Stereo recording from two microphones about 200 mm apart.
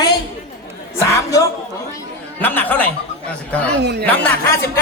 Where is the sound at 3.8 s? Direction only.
55° right (ahead or behind).